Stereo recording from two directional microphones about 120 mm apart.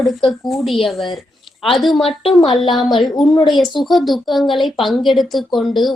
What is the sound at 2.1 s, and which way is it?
Speech, 50° left (ahead or behind).